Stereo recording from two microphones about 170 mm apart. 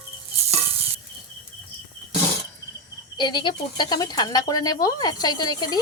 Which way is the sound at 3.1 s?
25° left (ahead or behind).